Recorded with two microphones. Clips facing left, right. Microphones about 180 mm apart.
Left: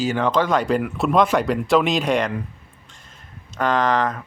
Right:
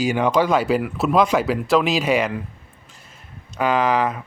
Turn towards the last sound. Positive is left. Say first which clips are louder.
# right 1 dB
turn(degrees=-10)  # may be behind; listen again after turning